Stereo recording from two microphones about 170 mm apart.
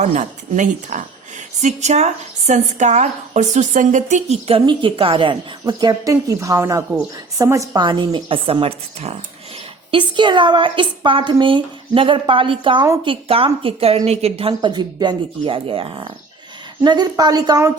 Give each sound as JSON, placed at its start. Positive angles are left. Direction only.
{"t": 0.0, "sound": "a woman's voice", "side_deg": -45}